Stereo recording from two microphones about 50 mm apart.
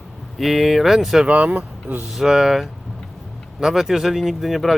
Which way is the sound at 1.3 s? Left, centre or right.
Right.